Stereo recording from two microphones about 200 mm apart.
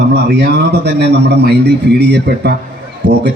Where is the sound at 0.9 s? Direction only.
55° right (ahead or behind).